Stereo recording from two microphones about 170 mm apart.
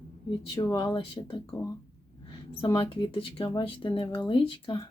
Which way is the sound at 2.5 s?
30° left (ahead or behind).